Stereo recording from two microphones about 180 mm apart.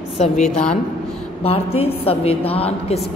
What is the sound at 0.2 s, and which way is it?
Speech, 35° left (ahead or behind).